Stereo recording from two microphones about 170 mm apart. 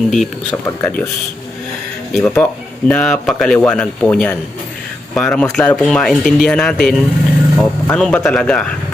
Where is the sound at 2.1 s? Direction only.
5° left (ahead or behind).